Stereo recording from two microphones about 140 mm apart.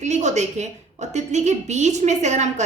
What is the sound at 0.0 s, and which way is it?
A woman's voice, 55° right (ahead or behind).